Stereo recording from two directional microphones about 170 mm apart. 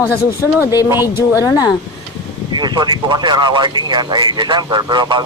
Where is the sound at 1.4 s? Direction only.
20° left (ahead or behind).